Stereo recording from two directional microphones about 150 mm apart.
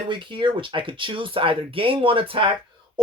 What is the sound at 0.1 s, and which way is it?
Speech, 35° right (ahead or behind).